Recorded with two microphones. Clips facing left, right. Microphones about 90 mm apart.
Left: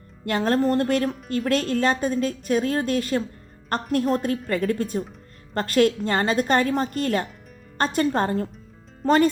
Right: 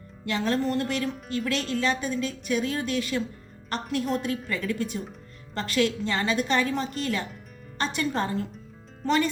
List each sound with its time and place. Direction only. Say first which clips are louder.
0.3 s a woman's voice: left 5 dB; 45° left (ahead or behind)